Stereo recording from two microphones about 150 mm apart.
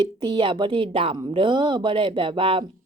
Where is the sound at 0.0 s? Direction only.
30° right (ahead or behind).